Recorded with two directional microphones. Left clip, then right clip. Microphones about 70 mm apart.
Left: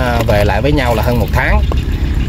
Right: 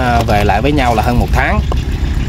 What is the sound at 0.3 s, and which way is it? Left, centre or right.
Speech, right.